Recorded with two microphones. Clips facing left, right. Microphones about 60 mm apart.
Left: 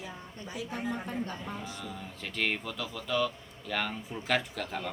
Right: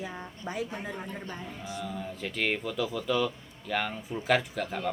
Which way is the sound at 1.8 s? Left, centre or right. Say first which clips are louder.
Right 5 dB; centre.